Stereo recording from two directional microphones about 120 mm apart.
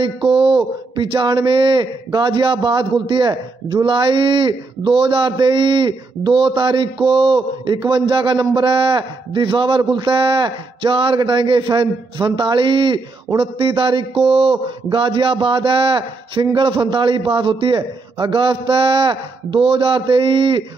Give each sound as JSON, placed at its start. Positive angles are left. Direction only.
{"t": 0.0, "sound": "speech", "side_deg": -45}